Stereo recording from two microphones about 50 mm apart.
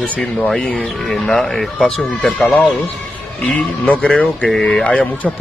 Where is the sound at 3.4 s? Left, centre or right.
Left.